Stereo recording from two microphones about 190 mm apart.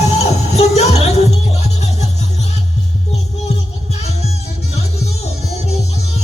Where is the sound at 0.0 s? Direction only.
35° left (ahead or behind).